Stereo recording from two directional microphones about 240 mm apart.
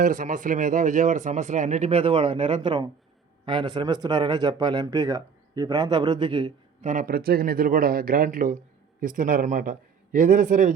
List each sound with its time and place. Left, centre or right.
0.0 s a man's voice: right
6.9 s a man's voice: right